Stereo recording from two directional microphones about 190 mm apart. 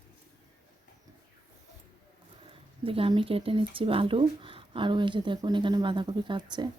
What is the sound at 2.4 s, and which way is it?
Speech, 30° right (ahead or behind).